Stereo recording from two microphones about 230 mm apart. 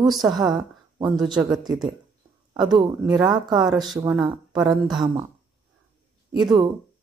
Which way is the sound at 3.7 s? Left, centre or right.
Centre.